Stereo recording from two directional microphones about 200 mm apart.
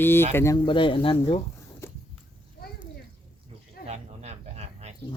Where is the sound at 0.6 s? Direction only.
25° left (ahead or behind).